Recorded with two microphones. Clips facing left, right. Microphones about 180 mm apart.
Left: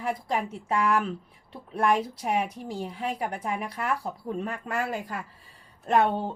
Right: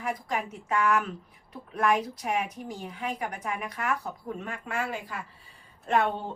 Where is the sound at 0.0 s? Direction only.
30° left (ahead or behind).